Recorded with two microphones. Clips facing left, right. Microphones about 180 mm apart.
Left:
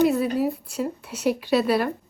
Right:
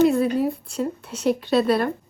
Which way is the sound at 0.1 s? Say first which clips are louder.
Right 2 dB; 5° left (ahead or behind).